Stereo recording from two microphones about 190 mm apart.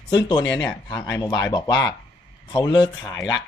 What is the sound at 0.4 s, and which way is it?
Speech, 70° left (ahead or behind).